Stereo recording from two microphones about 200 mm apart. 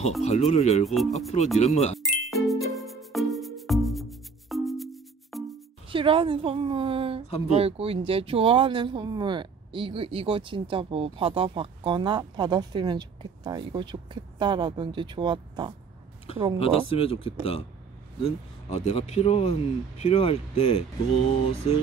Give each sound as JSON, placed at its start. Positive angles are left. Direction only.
{"t": 0.2, "sound": "speech", "side_deg": 35}
{"t": 0.8, "sound": "speech", "side_deg": 0}
{"t": 1.6, "sound": "speech", "side_deg": 35}
{"t": 2.0, "sound": "ding", "side_deg": 0}
{"t": 5.9, "sound": "speech", "side_deg": -25}
{"t": 7.2, "sound": "speech", "side_deg": 30}
{"t": 7.5, "sound": "speech", "side_deg": -30}
{"t": 16.5, "sound": "speech", "side_deg": 30}